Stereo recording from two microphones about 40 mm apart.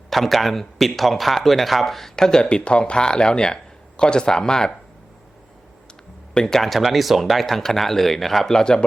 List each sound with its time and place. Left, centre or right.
0.1 s speech: centre
6.3 s speech: centre
6.7 s speech: centre